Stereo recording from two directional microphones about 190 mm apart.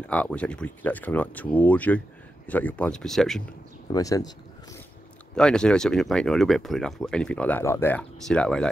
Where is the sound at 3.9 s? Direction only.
20° left (ahead or behind).